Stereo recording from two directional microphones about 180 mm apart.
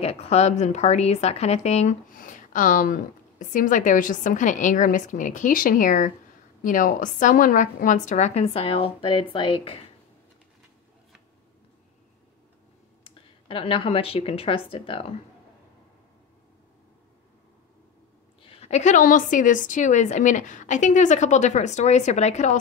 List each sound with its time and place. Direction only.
0.0 s speech: 35° left (ahead or behind)
13.0 s speech: 30° left (ahead or behind)
18.4 s a woman's voice: 30° left (ahead or behind)